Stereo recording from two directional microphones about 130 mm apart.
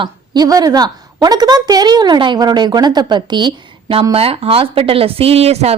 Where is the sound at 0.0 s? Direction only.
30° right (ahead or behind).